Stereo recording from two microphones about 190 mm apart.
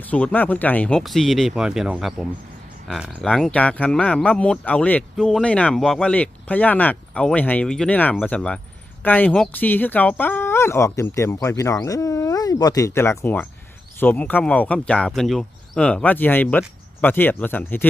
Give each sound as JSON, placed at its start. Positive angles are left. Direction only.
{"t": 0.1, "sound": "speech", "side_deg": 10}